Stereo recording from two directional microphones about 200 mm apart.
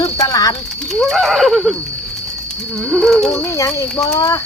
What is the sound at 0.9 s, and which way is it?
Speech, centre (ahead or behind).